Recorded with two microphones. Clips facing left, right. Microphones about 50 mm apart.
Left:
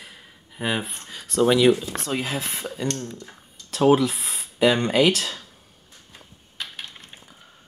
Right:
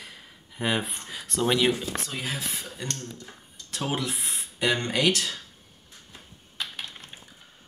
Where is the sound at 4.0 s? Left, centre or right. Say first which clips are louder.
Left 6 dB; centre.